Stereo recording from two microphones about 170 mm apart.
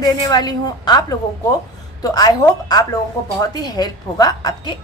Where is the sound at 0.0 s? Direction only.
25° left (ahead or behind).